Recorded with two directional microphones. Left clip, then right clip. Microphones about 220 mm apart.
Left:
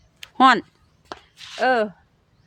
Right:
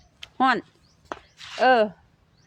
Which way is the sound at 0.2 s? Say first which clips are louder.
Left 7 dB; 30° left (ahead or behind).